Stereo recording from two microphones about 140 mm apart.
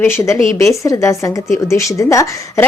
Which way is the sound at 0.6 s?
20° left (ahead or behind).